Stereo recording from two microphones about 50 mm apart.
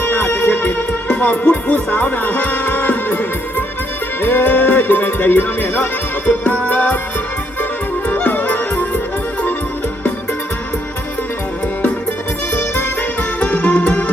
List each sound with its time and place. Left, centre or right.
0.0 s music: left
12.5 s music: left